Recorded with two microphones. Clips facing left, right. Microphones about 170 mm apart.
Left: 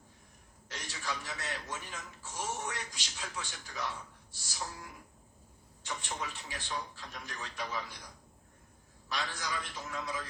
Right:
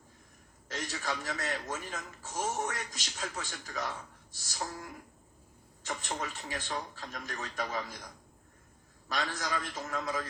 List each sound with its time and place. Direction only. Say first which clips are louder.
0.7 s a man's voice: right 4 dB; 45° right (ahead or behind)
5.8 s a man's voice: right 3 dB; 45° right (ahead or behind)
9.0 s a man's voice: right 3 dB; 45° right (ahead or behind)